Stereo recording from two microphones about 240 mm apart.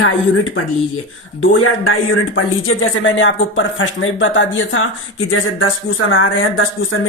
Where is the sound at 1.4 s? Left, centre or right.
Left.